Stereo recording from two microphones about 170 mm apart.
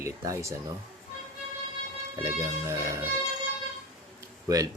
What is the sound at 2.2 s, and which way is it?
Speech, 15° right (ahead or behind).